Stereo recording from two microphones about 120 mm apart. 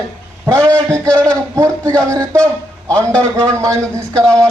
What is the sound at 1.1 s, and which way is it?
Speech, 10° left (ahead or behind).